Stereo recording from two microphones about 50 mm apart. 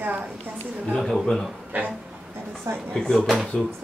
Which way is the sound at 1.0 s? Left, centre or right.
Centre.